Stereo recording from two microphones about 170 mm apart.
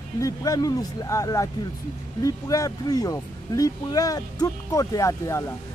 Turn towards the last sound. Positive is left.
turn(degrees=15)  # may be behind; listen again after turning